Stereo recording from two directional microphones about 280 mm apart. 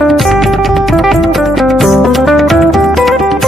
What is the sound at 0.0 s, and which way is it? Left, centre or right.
Music, centre.